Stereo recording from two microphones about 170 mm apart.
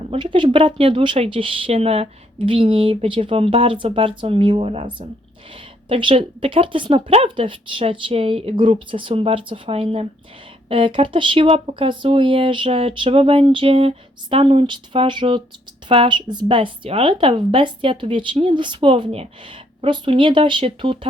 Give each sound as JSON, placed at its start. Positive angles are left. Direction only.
{"t": 0.0, "sound": "a woman's voice", "side_deg": -30}